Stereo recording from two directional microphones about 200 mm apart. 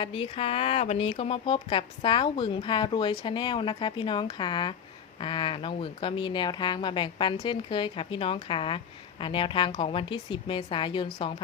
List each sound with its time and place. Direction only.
0.0 s speech: 25° left (ahead or behind)